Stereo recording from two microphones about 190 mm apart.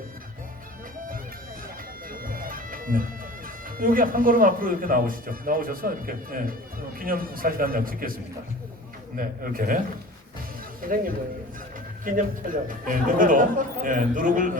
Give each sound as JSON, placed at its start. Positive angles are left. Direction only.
{"t": 2.0, "sound": "music", "side_deg": -50}
{"t": 3.8, "sound": "a man's voice", "side_deg": -45}
{"t": 10.8, "sound": "a man's voice", "side_deg": -50}